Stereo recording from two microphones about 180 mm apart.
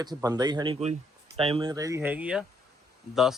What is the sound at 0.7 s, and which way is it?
Speech, 35° right (ahead or behind).